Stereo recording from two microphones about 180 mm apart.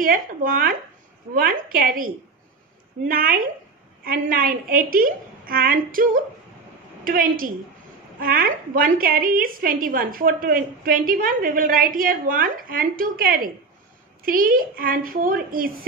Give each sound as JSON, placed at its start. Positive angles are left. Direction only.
{"t": 0.0, "sound": "a woman's voice", "side_deg": -50}